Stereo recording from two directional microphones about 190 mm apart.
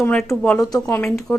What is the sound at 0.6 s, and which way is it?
Speech, 20° left (ahead or behind).